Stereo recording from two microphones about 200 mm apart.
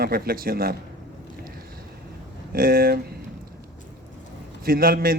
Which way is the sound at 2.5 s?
45° right (ahead or behind).